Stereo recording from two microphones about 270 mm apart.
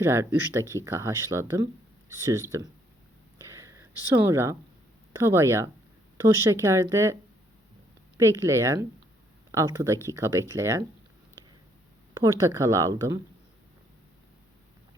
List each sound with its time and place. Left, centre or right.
0.0 s speech: centre
3.4 s a sound: centre
5.1 s speech: centre
8.2 s speech: centre
12.2 s speech: centre